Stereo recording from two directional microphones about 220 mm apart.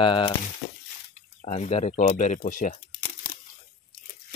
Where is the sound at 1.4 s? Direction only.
30° left (ahead or behind).